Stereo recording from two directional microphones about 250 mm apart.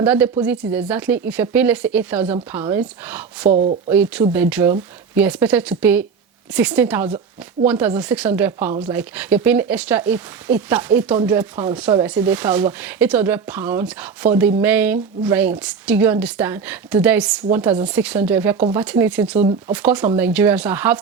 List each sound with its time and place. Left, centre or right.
0.0 s speech: centre
3.5 s speech: right
3.8 s speech: centre
19.4 s speech: right
19.7 s speech: centre